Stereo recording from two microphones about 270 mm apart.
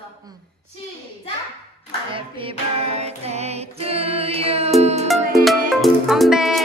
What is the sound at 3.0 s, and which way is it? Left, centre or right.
Music, right.